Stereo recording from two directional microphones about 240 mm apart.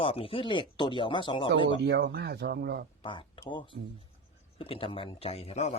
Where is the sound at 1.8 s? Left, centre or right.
Right.